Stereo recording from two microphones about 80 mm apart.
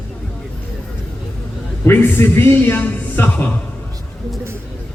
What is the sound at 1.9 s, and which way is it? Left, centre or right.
A man's voice, left.